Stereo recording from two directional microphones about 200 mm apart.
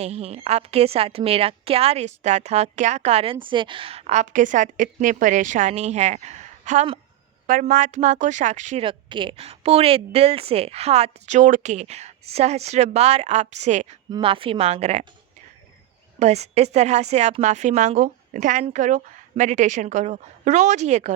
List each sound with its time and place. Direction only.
0.0 s a woman's voice: 30° right (ahead or behind)
16.1 s a woman's voice: 35° right (ahead or behind)